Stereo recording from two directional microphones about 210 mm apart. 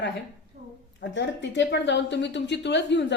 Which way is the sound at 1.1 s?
60° left (ahead or behind).